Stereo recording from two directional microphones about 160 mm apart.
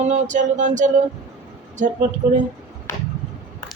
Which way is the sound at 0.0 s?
50° right (ahead or behind).